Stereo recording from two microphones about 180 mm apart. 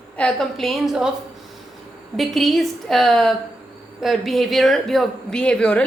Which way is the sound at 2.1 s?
Centre (ahead or behind).